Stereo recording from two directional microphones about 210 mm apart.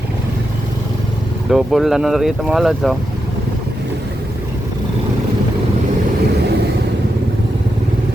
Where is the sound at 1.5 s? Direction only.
Centre (ahead or behind).